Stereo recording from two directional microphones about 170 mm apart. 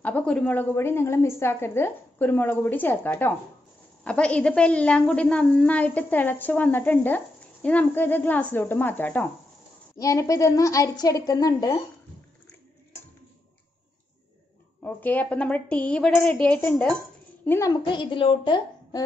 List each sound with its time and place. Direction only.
0.0 s a woman's voice: 5° left (ahead or behind)
14.8 s a woman's voice: 10° left (ahead or behind)
17.5 s a woman's voice: 20° left (ahead or behind)